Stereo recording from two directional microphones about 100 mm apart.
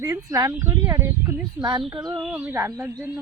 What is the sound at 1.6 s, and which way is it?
Speech, 45° right (ahead or behind).